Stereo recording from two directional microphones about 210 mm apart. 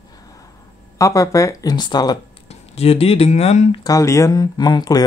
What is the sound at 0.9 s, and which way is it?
Speech, 15° left (ahead or behind).